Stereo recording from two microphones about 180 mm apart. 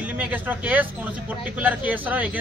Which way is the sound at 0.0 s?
10° right (ahead or behind).